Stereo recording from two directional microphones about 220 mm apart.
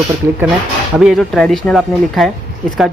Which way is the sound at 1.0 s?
Centre (ahead or behind).